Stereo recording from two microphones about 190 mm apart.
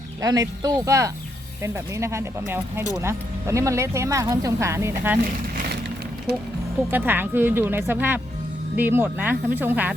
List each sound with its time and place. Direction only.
0.2 s speech: 20° right (ahead or behind)
6.9 s speech: 10° right (ahead or behind)